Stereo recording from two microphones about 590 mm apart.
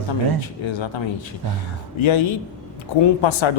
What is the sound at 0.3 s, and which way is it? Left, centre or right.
Speech, left.